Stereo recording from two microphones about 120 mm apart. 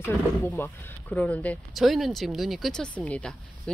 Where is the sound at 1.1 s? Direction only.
10° left (ahead or behind).